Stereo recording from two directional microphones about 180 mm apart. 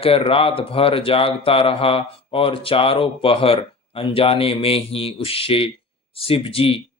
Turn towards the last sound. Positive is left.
turn(degrees=30)  # may be behind; listen again after turning